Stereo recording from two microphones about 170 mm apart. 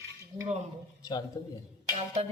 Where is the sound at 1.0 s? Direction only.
25° left (ahead or behind).